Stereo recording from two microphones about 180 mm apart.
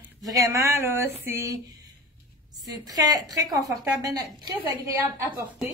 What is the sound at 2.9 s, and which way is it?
A woman's voice, 20° right (ahead or behind).